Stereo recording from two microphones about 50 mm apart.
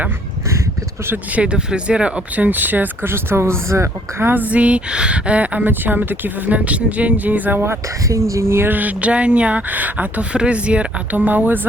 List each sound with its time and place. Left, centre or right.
1.3 s speech: right
3.1 s speech: right
4.3 s a woman's voice: right
7.6 s speech: right
8.7 s a woman's voice: right
10.3 s a woman's voice: right